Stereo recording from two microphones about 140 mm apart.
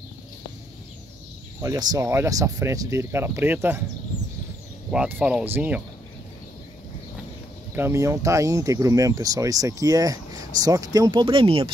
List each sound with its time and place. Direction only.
1.6 s speech: 25° right (ahead or behind)
4.9 s speech: 5° right (ahead or behind)
7.7 s speech: 20° right (ahead or behind); by 11.7 s 40° right (ahead or behind)